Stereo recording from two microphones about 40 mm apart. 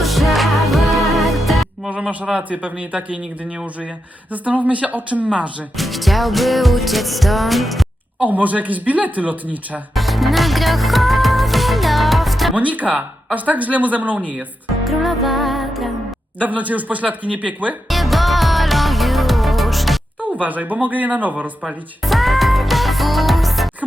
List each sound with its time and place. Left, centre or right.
0.0 s music: centre
1.9 s a man's voice: right
4.3 s speech: right
5.7 s music: centre
8.2 s speech: right
9.9 s music: centre
12.5 s speech: right
14.8 s music: centre
16.4 s speech: right
17.8 s music: centre
20.4 s speech: right
22.0 s music: centre